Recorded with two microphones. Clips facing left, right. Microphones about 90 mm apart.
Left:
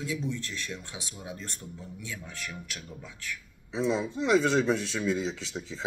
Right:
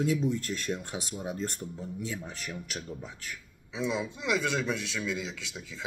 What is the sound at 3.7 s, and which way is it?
Speech, 35° left (ahead or behind).